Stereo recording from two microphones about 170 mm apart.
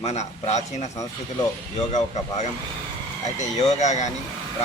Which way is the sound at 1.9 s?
45° left (ahead or behind).